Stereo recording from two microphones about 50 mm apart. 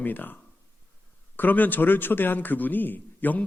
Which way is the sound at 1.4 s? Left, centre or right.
Left.